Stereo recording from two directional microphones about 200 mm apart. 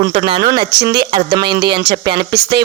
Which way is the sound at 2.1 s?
25° right (ahead or behind).